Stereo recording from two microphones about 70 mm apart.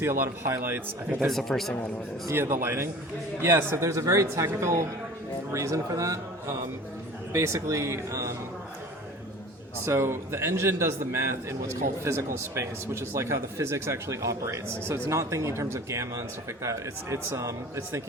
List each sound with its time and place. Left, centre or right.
0.0 s a man's voice: right
1.3 s speech: centre
2.3 s a man's voice: right
9.8 s a man's voice: right